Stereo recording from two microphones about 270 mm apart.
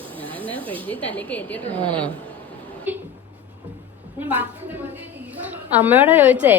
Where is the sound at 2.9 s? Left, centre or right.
Centre.